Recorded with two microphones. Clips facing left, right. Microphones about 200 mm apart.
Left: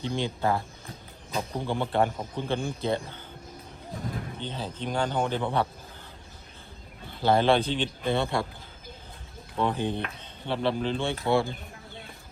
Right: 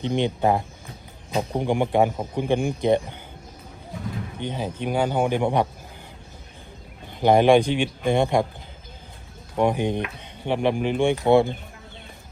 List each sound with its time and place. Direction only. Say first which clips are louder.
0.0 s speech: right 6 dB; 20° right (ahead or behind)
1.6 s speech: right 5 dB; 15° right (ahead or behind)
4.4 s speech: right 6 dB; 15° right (ahead or behind)
7.1 s speech: right 6 dB; 15° right (ahead or behind)
9.6 s speech: right 6 dB; 15° right (ahead or behind)